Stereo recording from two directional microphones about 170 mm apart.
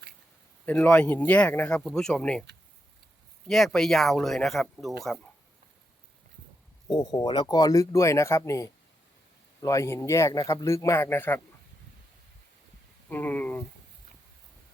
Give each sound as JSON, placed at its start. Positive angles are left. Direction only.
{"t": 0.6, "sound": "a man's voice", "side_deg": 10}
{"t": 3.4, "sound": "speech", "side_deg": 5}
{"t": 6.8, "sound": "a man's voice", "side_deg": 25}
{"t": 13.1, "sound": "a sound", "side_deg": 10}